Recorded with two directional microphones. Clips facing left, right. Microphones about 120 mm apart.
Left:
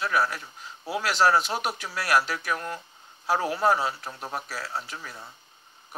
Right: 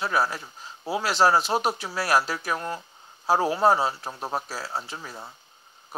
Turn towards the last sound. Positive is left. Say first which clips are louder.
# right 2 dB
turn(degrees=-30)  # may be behind; listen again after turning